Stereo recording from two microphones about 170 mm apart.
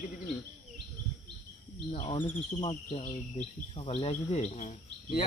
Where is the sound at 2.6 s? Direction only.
30° left (ahead or behind).